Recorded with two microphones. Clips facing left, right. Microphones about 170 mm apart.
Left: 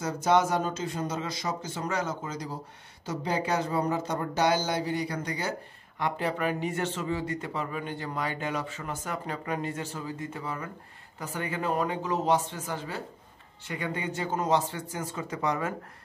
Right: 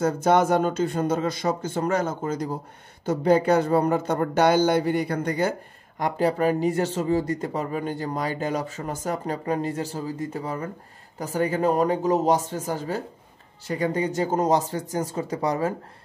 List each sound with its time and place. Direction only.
0.0 s speech: 55° right (ahead or behind)
5.9 s speech: 40° right (ahead or behind)